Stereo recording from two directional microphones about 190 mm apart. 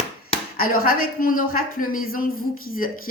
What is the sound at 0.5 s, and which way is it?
A woman's voice, 50° left (ahead or behind).